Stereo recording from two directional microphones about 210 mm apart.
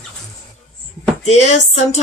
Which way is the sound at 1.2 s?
30° left (ahead or behind).